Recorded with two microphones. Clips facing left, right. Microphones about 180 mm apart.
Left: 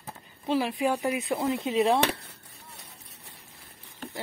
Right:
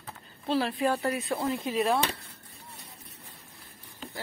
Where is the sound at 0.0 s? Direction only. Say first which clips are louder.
Left 1 dB; 15° left (ahead or behind).